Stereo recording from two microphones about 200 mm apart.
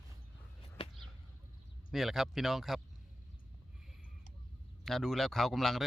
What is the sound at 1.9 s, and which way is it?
Speech, centre (ahead or behind).